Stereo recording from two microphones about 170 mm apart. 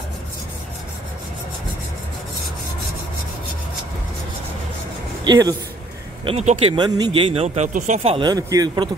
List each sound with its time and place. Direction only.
5.2 s speech: 25° right (ahead or behind)
6.2 s speech: 40° right (ahead or behind)
8.2 s a man's voice: 20° right (ahead or behind)